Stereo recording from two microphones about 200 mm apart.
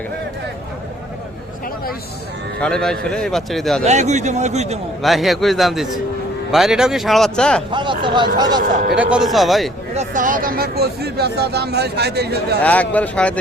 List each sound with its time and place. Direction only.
2.6 s a man's voice: 5° left (ahead or behind)
3.8 s a man's voice: 35° right (ahead or behind)
5.0 s a man's voice: centre (ahead or behind)
7.7 s speech: 25° right (ahead or behind)
8.6 s a man's voice: 40° right (ahead or behind)
9.0 s a man's voice: 5° right (ahead or behind)
9.9 s speech: 35° right (ahead or behind); by 12.5 s 55° right (ahead or behind)
12.6 s speech: 5° left (ahead or behind)